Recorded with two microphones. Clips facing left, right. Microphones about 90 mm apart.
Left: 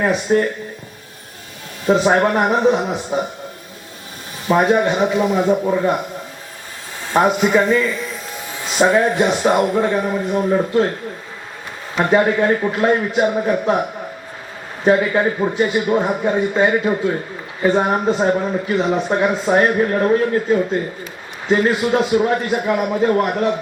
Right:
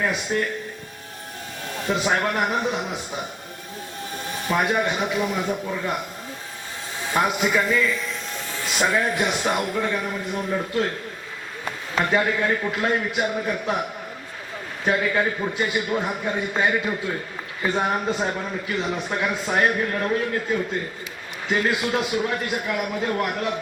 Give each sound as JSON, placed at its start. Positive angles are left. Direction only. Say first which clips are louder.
{"t": 0.0, "sound": "speech", "louder": "left 8 dB", "side_deg": 35}
{"t": 1.9, "sound": "speech", "louder": "left 9 dB", "side_deg": 35}
{"t": 4.4, "sound": "speech", "louder": "left 8 dB", "side_deg": 30}
{"t": 7.1, "sound": "speech", "louder": "left 7 dB", "side_deg": 25}
{"t": 7.9, "sound": "a sound", "louder": "left 3 dB", "side_deg": 0}
{"t": 8.8, "sound": "speech", "louder": "left 8 dB", "side_deg": 30}
{"t": 11.9, "sound": "speech", "louder": "left 7 dB", "side_deg": 35}
{"t": 14.8, "sound": "speech", "louder": "left 7 dB", "side_deg": 30}